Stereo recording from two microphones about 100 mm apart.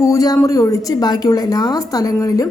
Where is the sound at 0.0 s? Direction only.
35° left (ahead or behind).